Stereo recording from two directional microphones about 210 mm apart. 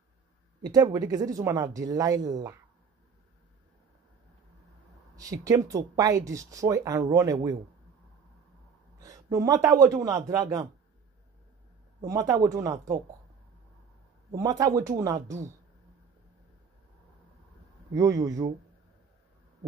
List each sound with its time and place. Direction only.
0.6 s speech: 20° right (ahead or behind)
5.1 s speech: 15° right (ahead or behind)
9.0 s speech: 15° right (ahead or behind)
12.0 s speech: 15° right (ahead or behind)
14.3 s speech: 15° right (ahead or behind)
17.9 s speech: 15° right (ahead or behind)